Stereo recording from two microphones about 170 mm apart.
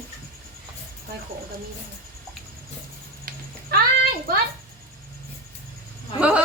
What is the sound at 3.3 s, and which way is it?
Cat, 55° right (ahead or behind).